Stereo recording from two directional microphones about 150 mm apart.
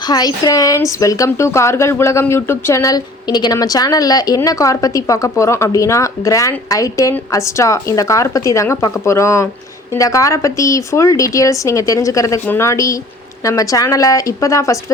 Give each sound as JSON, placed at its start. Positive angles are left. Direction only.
{"t": 0.0, "sound": "a woman's voice", "side_deg": 25}